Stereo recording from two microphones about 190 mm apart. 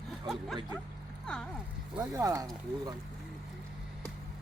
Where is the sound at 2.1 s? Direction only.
15° right (ahead or behind).